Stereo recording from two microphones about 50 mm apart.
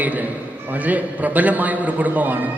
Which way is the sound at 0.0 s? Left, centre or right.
Right.